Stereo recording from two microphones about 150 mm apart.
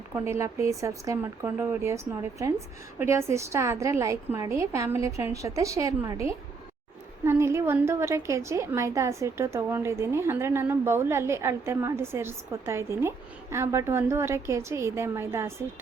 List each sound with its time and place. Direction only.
0.1 s a woman's voice: 20° right (ahead or behind)
3.0 s a woman's voice: 15° right (ahead or behind)